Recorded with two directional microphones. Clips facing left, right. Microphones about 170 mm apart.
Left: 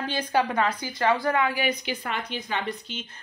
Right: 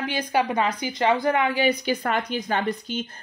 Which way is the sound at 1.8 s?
45° right (ahead or behind).